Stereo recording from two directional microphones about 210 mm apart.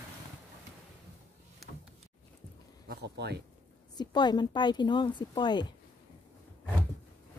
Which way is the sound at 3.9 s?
20° left (ahead or behind).